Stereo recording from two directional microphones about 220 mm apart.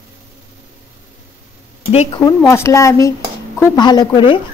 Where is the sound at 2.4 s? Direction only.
15° left (ahead or behind).